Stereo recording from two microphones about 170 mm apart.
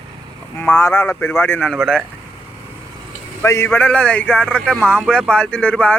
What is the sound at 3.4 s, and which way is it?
Speech, 15° left (ahead or behind).